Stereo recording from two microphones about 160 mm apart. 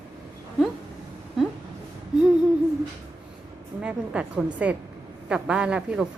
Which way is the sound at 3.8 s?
5° right (ahead or behind).